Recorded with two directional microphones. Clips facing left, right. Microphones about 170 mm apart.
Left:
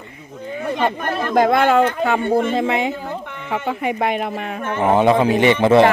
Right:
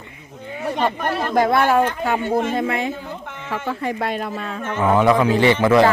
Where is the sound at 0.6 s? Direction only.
55° left (ahead or behind).